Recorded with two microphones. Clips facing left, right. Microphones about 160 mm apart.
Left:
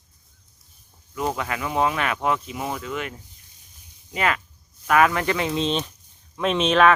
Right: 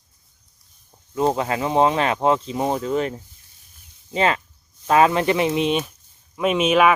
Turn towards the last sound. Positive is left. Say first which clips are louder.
# right 1 dB
turn(degrees=-10)  # may be behind; listen again after turning